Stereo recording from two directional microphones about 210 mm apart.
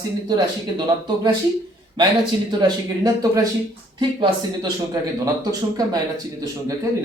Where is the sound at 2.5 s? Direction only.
20° right (ahead or behind).